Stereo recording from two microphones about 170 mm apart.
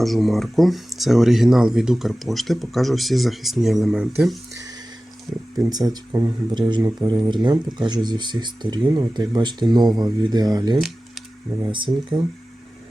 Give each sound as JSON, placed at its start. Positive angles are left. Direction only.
{"t": 0.0, "sound": "speech", "side_deg": 0}
{"t": 5.5, "sound": "speech", "side_deg": -20}